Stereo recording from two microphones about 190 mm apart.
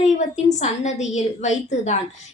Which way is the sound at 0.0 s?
35° left (ahead or behind).